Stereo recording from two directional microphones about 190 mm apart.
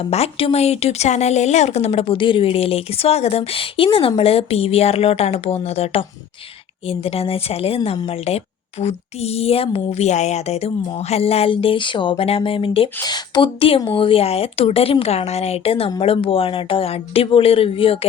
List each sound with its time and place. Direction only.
0.0 s speech: 30° left (ahead or behind)